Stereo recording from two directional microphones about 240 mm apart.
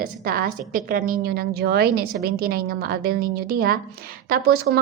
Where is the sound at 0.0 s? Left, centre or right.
Right.